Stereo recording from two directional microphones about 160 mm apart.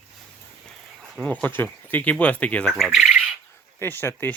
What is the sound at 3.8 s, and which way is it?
Speech, 15° left (ahead or behind).